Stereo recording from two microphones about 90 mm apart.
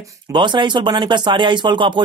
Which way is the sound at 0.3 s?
65° right (ahead or behind).